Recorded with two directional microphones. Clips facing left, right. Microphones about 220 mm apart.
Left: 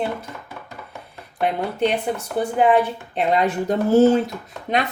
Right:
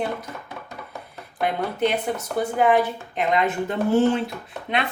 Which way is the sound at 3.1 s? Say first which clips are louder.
Left 2 dB; 35° left (ahead or behind).